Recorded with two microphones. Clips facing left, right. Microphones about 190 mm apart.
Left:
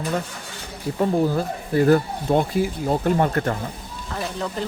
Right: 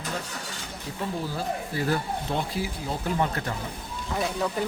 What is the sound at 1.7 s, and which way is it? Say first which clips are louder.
Speech: left 13 dB; 50° left (ahead or behind).